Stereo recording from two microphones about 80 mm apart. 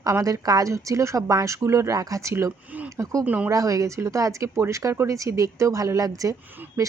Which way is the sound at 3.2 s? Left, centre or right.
Centre.